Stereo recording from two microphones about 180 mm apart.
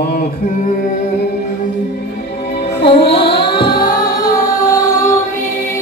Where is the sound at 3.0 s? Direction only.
65° left (ahead or behind).